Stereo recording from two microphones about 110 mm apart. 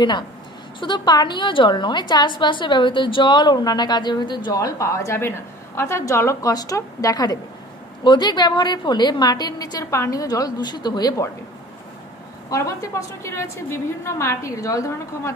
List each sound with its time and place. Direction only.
0.7 s a woman's voice: 45° left (ahead or behind)
12.4 s a woman's voice: 30° left (ahead or behind)